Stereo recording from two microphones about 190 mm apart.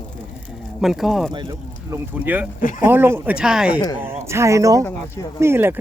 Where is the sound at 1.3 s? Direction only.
25° right (ahead or behind).